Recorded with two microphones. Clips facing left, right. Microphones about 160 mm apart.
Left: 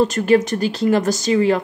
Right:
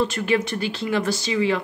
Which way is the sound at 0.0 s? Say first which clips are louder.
Left 7 dB; 40° left (ahead or behind).